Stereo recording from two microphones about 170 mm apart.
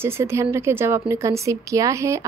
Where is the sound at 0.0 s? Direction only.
15° right (ahead or behind).